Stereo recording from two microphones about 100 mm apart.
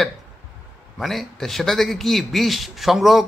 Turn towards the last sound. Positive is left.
turn(degrees=0)  # may be behind; listen again after turning